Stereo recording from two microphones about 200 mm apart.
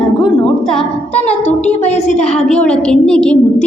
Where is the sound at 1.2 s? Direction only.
35° left (ahead or behind).